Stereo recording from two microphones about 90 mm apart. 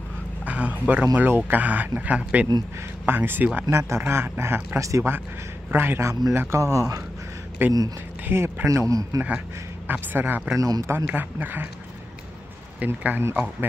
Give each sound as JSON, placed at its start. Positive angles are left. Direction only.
{"t": 0.5, "sound": "a sound", "side_deg": -15}
{"t": 1.1, "sound": "speech", "side_deg": -20}
{"t": 4.7, "sound": "a man's voice", "side_deg": -35}
{"t": 7.6, "sound": "a man's voice", "side_deg": -25}
{"t": 9.8, "sound": "speech", "side_deg": -25}
{"t": 10.6, "sound": "a man's voice", "side_deg": -35}
{"t": 11.1, "sound": "speech", "side_deg": -20}
{"t": 12.8, "sound": "speech", "side_deg": -20}